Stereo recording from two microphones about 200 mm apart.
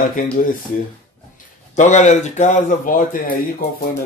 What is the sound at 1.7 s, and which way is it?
Speech, 35° left (ahead or behind).